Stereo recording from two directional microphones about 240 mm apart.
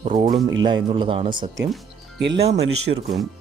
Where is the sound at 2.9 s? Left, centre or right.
Right.